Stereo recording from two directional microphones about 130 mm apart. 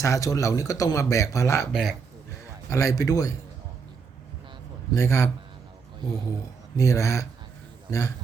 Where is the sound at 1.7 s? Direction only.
Centre (ahead or behind).